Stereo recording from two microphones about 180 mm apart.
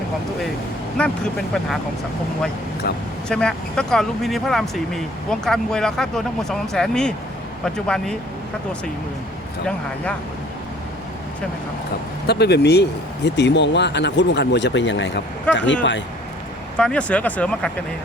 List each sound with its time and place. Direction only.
0.9 s speech: 5° left (ahead or behind)
2.8 s speech: 60° left (ahead or behind)
3.2 s speech: 5° left (ahead or behind)
9.6 s speech: 5° left (ahead or behind)
12.2 s speech: 65° left (ahead or behind); by 16.0 s 90° left
16.7 s speech: 5° left (ahead or behind)